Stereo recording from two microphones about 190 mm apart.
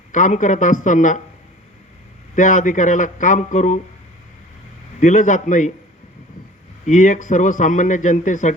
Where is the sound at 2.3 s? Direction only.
40° left (ahead or behind).